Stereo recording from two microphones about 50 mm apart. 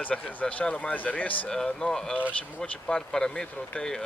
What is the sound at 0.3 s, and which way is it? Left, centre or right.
Speech, left.